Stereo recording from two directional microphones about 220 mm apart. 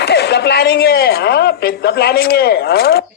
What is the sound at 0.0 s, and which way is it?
A woman's voice, 50° left (ahead or behind).